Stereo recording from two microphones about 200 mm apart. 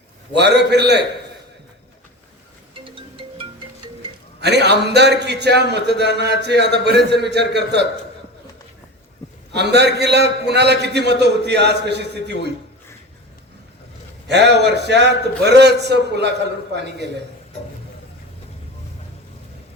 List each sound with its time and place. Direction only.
0.3 s a man's voice: 55° right (ahead or behind)
2.8 s music: 25° right (ahead or behind)
4.4 s a man's voice: 55° right (ahead or behind)
9.5 s a man's voice: 55° right (ahead or behind)
14.3 s a man's voice: 60° right (ahead or behind)